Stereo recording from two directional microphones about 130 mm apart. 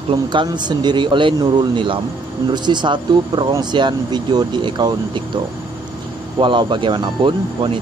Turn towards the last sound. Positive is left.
turn(degrees=-35)  # may be behind; listen again after turning